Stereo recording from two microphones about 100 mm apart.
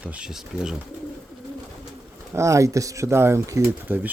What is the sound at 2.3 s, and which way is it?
Speech, 30° right (ahead or behind).